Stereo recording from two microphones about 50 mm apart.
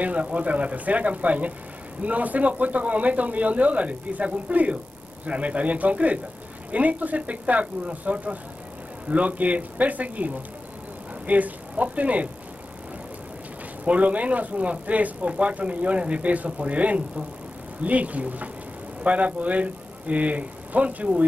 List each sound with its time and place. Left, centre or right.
0.0 s speech: right
13.8 s speech: right